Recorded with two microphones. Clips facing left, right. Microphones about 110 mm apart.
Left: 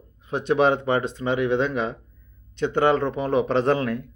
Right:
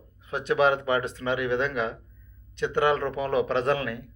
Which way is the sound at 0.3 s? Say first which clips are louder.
Left 3 dB; 25° left (ahead or behind).